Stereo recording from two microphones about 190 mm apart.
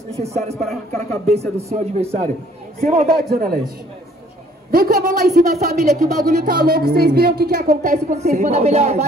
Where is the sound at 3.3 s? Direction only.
55° right (ahead or behind).